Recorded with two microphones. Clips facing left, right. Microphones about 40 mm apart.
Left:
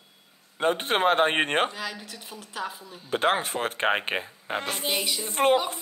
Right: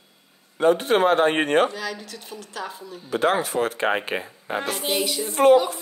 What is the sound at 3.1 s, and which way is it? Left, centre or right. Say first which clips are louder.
Speech: right 3 dB; left.